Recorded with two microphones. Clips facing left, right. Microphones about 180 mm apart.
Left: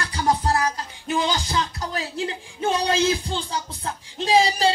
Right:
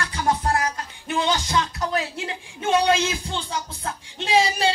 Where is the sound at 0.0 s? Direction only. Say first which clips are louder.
Left 1 dB; 35° left (ahead or behind).